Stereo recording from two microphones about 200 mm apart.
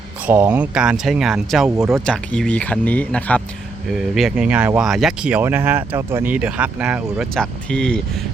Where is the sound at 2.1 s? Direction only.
5° left (ahead or behind).